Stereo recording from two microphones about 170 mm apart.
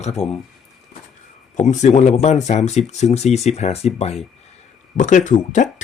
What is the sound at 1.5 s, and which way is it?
Speech, 45° left (ahead or behind).